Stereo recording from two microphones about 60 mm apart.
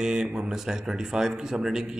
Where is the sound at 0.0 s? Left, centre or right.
Centre.